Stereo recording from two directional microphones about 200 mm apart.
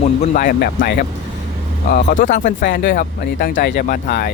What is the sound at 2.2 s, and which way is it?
Speech, 40° left (ahead or behind).